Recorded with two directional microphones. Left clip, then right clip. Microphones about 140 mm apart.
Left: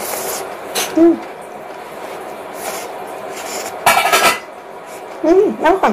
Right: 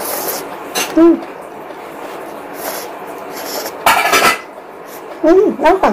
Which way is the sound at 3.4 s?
20° right (ahead or behind).